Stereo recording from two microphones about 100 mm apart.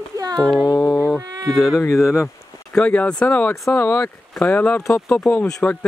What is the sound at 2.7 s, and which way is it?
Speech, 15° left (ahead or behind).